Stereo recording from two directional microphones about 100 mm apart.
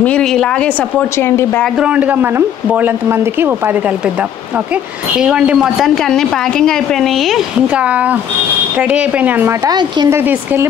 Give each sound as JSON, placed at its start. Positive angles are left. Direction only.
{"t": 0.0, "sound": "speech", "side_deg": 10}
{"t": 1.1, "sound": "speech", "side_deg": 25}
{"t": 1.8, "sound": "speech", "side_deg": -15}
{"t": 5.1, "sound": "a woman's voice", "side_deg": -10}
{"t": 7.6, "sound": "speech", "side_deg": -15}
{"t": 9.7, "sound": "speech", "side_deg": -45}
{"t": 10.0, "sound": "speech", "side_deg": -25}